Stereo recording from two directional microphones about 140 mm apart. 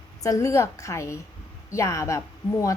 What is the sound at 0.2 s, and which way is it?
A woman's voice, 20° left (ahead or behind).